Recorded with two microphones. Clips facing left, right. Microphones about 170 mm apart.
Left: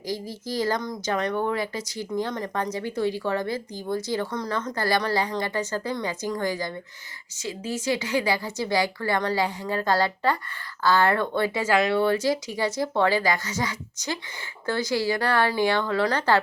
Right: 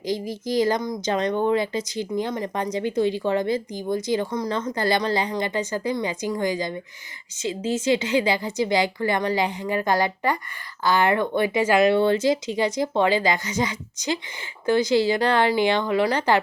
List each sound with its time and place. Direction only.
0.0 s speech: 20° right (ahead or behind)